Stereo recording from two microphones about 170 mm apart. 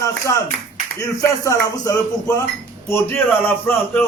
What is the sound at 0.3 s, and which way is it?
A man's voice, 20° left (ahead or behind).